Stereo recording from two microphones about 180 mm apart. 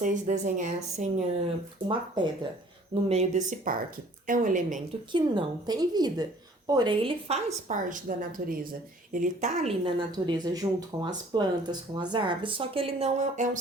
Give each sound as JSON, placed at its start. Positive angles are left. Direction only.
{"t": 0.0, "sound": "speech", "side_deg": -45}
{"t": 1.9, "sound": "speech", "side_deg": -25}
{"t": 2.9, "sound": "a woman's voice", "side_deg": -35}
{"t": 5.1, "sound": "speech", "side_deg": -25}
{"t": 7.7, "sound": "speech", "side_deg": -45}
{"t": 9.8, "sound": "a woman's voice", "side_deg": -25}